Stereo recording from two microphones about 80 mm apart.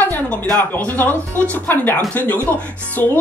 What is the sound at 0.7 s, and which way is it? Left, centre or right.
Speech, left.